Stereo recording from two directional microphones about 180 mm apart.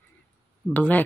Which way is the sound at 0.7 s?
10° left (ahead or behind).